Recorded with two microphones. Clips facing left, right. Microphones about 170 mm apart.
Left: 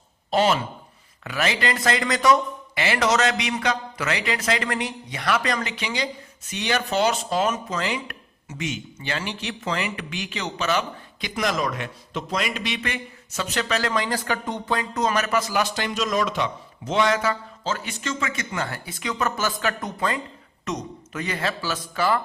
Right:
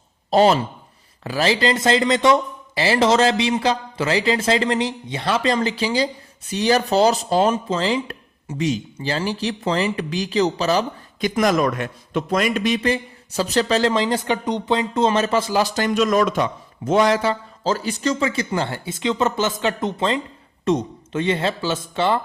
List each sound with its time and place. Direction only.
0.3 s a man's voice: 35° right (ahead or behind)
11.3 s a man's voice: 50° right (ahead or behind); by 15.7 s 30° right (ahead or behind)
15.7 s a man's voice: 50° right (ahead or behind)
17.1 s a man's voice: 30° right (ahead or behind)